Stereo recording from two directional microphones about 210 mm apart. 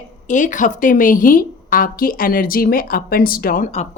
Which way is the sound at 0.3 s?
35° left (ahead or behind).